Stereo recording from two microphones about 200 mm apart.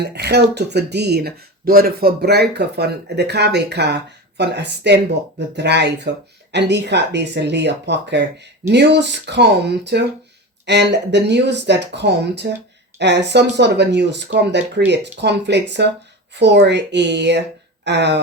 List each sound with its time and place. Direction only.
0.0 s speech: 55° right (ahead or behind)